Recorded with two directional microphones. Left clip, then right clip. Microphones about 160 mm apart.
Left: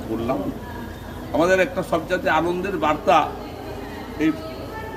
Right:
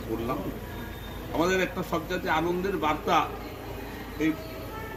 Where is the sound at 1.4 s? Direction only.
35° left (ahead or behind).